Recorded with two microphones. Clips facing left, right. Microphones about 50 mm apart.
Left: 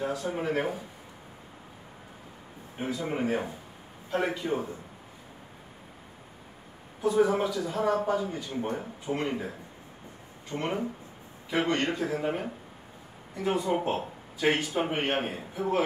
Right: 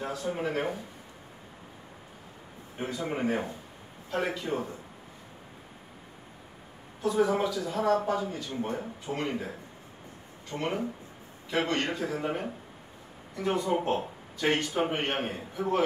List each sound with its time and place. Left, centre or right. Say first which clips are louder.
0.3 s speech: right 2 dB; centre
2.8 s speech: left 1 dB; centre
7.0 s speech: left 2 dB; centre
8.0 s speech: left 2 dB; centre
8.3 s speech: left 1 dB; centre
10.5 s speech: left 1 dB; centre